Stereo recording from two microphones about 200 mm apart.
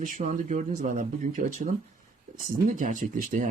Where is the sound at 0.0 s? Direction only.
40° right (ahead or behind).